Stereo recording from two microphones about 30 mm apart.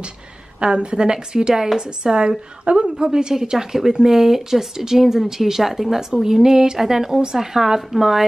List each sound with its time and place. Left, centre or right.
0.7 s a woman's voice: right
1.8 s a woman's voice: right
3.5 s speech: centre